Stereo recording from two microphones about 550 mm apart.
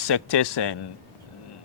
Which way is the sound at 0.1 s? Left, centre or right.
Left.